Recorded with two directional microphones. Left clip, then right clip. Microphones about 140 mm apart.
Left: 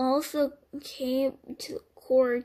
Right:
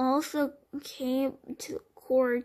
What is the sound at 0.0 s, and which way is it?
Speech, 35° right (ahead or behind).